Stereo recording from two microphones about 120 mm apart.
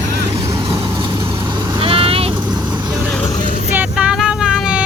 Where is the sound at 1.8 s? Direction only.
50° right (ahead or behind).